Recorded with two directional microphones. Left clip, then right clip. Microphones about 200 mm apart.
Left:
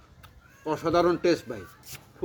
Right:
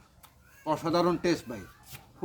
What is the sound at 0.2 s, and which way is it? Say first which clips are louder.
A man's voice: left 3 dB; 20° right (ahead or behind).